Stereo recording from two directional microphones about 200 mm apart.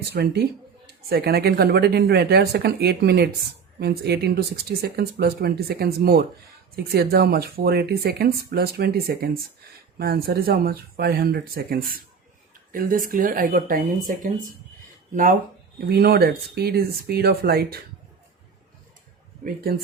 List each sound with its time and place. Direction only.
0.1 s speech: 55° right (ahead or behind)